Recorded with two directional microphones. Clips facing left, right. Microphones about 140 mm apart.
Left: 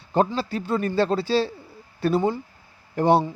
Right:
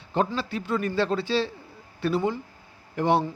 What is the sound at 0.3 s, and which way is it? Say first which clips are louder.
A man's voice: left 3 dB; 35° left (ahead or behind).